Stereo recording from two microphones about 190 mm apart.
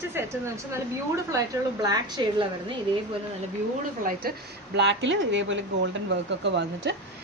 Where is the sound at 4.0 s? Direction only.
50° right (ahead or behind); by 6.9 s 70° right (ahead or behind).